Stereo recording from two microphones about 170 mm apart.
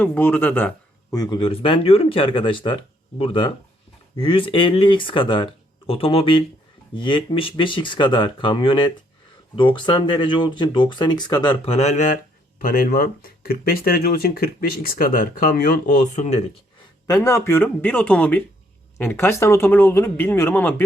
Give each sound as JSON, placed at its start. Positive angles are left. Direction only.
{"t": 0.0, "sound": "speech", "side_deg": 10}
{"t": 1.1, "sound": "speech", "side_deg": 25}
{"t": 12.6, "sound": "speech", "side_deg": 55}
{"t": 17.1, "sound": "speech", "side_deg": 20}